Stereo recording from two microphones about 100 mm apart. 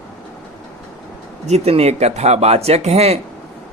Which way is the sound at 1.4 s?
90° right.